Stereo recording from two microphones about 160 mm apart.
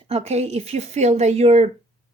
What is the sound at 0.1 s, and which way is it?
A woman's voice, 40° right (ahead or behind).